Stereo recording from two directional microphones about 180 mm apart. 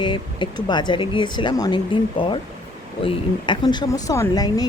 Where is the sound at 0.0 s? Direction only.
25° left (ahead or behind).